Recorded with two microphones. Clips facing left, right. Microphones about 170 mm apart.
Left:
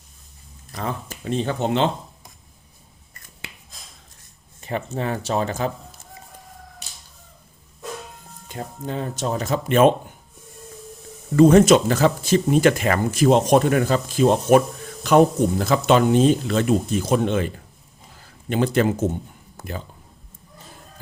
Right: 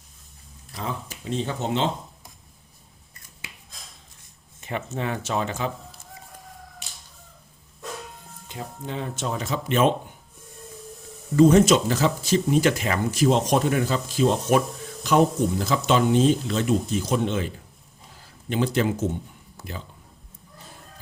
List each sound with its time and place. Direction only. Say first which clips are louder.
0.7 s speech: left 3 dB; 55° left (ahead or behind)
4.6 s a sound: left 4 dB; 35° left (ahead or behind)
4.9 s speech: left 3 dB; 35° left (ahead or behind)
8.9 s speech: left 4 dB; 40° left (ahead or behind)
11.3 s speech: left 3 dB; 60° left (ahead or behind)